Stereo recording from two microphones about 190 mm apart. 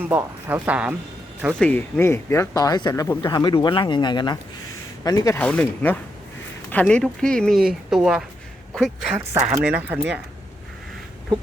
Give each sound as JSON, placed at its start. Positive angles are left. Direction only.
{"t": 0.0, "sound": "speech", "side_deg": -10}
{"t": 1.5, "sound": "speech", "side_deg": 5}
{"t": 9.1, "sound": "speech", "side_deg": -15}